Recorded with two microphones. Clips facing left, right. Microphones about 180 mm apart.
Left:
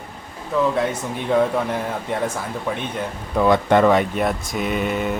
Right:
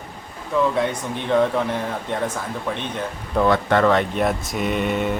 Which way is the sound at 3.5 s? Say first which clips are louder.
Left 3 dB; 15° left (ahead or behind).